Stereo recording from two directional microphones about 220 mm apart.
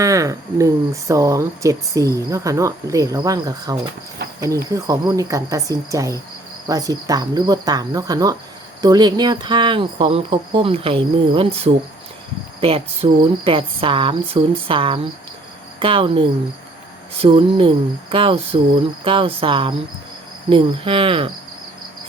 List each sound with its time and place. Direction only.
0.0 s speech: 15° right (ahead or behind)